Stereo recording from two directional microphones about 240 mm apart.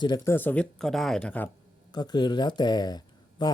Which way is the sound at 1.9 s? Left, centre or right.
Centre.